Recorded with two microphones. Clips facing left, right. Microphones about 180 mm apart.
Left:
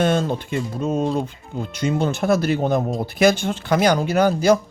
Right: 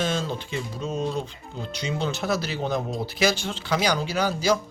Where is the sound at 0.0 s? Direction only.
55° left (ahead or behind).